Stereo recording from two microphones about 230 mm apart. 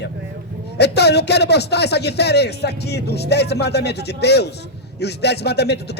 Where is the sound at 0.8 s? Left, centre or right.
Left.